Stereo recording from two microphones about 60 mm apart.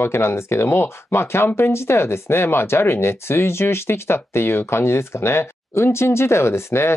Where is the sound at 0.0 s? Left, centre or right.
Left.